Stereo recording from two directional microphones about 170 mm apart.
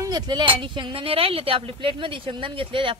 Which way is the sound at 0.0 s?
25° right (ahead or behind).